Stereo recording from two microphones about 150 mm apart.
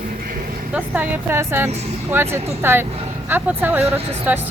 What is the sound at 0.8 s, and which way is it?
Speech, 10° right (ahead or behind).